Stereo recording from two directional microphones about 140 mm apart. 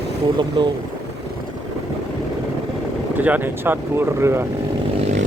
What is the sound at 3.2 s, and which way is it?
Speech, 10° right (ahead or behind).